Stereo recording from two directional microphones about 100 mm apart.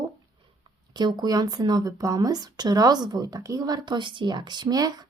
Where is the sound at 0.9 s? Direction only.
45° right (ahead or behind).